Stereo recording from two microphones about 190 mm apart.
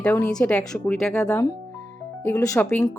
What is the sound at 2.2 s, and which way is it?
Speech, 15° left (ahead or behind).